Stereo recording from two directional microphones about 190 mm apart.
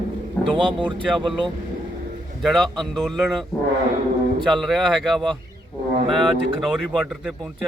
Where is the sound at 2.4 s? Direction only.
Centre (ahead or behind).